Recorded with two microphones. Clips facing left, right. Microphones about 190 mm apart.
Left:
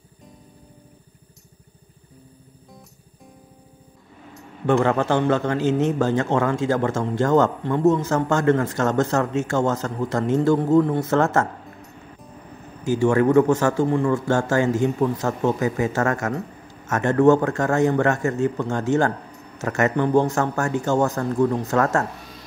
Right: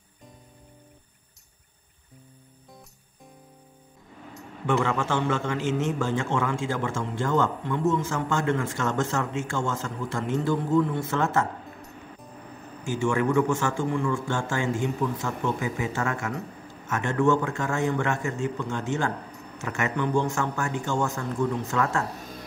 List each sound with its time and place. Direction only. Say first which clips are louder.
4.9 s a man's voice: left 6 dB; 40° left (ahead or behind)
11.8 s music: left 1 dB; centre (ahead or behind)
12.8 s a man's voice: left 7 dB; 40° left (ahead or behind)
22.1 s a sound: right 1 dB; 45° right (ahead or behind)